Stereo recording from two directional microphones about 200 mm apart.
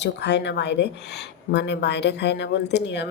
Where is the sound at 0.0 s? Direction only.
60° left (ahead or behind).